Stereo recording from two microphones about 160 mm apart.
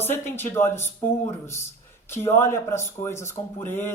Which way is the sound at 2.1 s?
15° left (ahead or behind).